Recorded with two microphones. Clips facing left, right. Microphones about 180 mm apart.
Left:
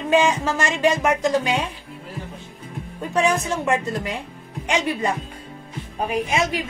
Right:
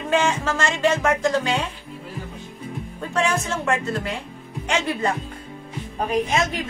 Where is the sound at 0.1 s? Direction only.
15° left (ahead or behind).